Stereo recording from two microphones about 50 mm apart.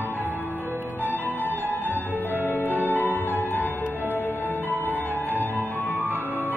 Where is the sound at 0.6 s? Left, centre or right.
Right.